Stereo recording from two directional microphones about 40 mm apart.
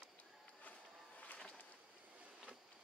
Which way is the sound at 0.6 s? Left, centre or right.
Left.